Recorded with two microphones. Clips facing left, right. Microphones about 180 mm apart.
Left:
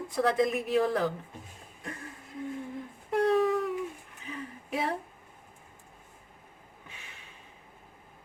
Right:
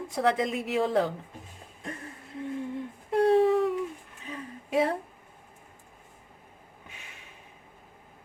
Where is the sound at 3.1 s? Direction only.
30° right (ahead or behind).